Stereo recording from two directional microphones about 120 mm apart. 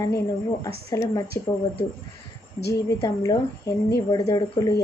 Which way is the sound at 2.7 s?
25° left (ahead or behind).